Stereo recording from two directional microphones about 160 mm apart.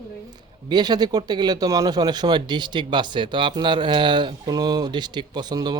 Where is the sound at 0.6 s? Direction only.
25° right (ahead or behind).